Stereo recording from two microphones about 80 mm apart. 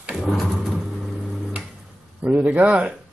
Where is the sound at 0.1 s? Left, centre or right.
Centre.